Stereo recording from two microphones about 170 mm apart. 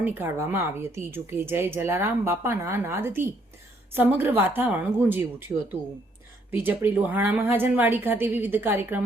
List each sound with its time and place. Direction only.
0.0 s a woman's voice: 10° right (ahead or behind)
5.5 s speech: 20° right (ahead or behind)
6.5 s a woman's voice: 10° right (ahead or behind)